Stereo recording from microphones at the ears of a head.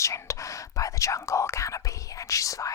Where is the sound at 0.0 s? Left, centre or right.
Left.